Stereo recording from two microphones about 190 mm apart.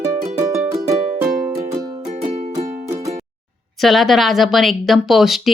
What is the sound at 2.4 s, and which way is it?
Music, 35° right (ahead or behind).